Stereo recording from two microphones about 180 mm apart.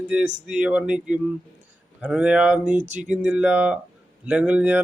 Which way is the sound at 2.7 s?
40° right (ahead or behind).